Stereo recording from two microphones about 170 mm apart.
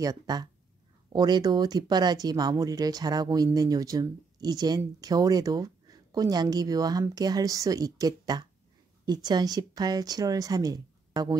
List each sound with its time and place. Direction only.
0.0 s speech: 20° right (ahead or behind)